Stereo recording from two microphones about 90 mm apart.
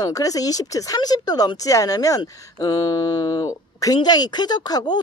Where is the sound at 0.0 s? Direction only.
40° left (ahead or behind).